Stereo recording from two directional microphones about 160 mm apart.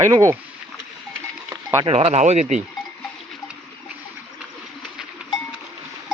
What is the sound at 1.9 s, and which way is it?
Speech, 40° right (ahead or behind).